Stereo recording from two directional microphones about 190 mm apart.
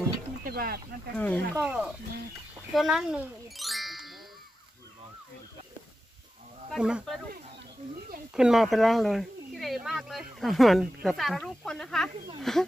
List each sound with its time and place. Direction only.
0.4 s a sound: 50° right (ahead or behind)
1.1 s speech: 10° left (ahead or behind)
1.5 s a child's voice: 5° right (ahead or behind)
6.7 s speech: 5° right (ahead or behind)
8.4 s speech: centre (ahead or behind)